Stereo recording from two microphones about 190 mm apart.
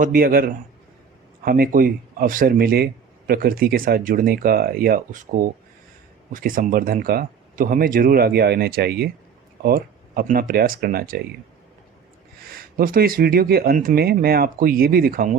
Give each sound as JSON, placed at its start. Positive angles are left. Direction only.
{"t": 0.0, "sound": "speech", "side_deg": -50}
{"t": 12.4, "sound": "speech", "side_deg": -50}